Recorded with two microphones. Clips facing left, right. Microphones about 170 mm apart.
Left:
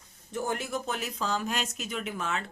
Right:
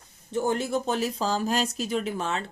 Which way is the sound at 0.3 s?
30° right (ahead or behind).